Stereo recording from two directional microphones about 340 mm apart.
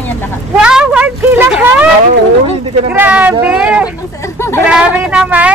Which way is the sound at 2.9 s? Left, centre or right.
Centre.